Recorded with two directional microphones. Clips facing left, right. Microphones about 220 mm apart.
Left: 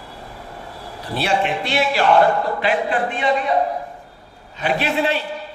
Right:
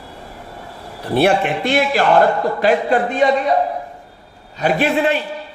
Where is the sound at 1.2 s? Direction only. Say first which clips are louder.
Right 6 dB; 55° right (ahead or behind).